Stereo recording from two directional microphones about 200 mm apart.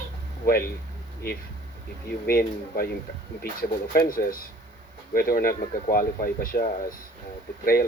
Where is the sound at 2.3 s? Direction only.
50° left (ahead or behind).